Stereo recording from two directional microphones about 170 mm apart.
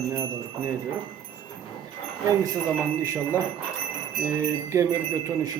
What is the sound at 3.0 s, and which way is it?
Speech, 15° right (ahead or behind).